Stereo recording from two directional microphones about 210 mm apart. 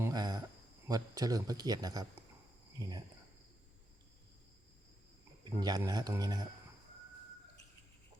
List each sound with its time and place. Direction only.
0.0 s cricket: 20° right (ahead or behind)
0.9 s speech: 15° right (ahead or behind)
5.5 s speech: 20° right (ahead or behind)